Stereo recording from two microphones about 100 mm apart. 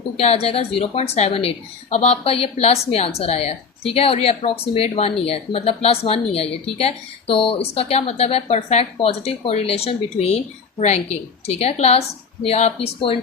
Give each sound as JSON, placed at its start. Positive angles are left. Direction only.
{"t": 0.2, "sound": "a woman's voice", "side_deg": 90}